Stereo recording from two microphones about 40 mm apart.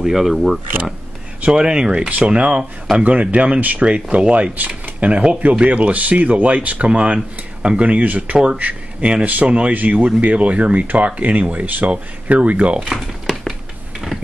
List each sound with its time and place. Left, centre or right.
0.1 s speech: centre
1.5 s speech: centre
2.0 s speech: right
6.9 s speech: right
11.9 s speech: right
12.8 s a sound: centre